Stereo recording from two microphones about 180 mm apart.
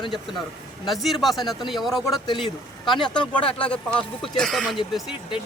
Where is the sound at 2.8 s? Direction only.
25° left (ahead or behind).